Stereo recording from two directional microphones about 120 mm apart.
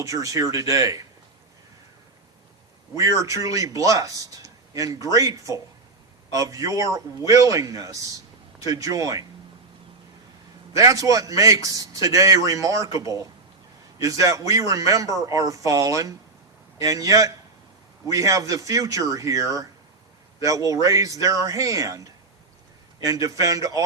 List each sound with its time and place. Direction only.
0.0 s a man's voice: 30° right (ahead or behind)
3.0 s a man's voice: 25° right (ahead or behind)
10.8 s a man's voice: 30° right (ahead or behind)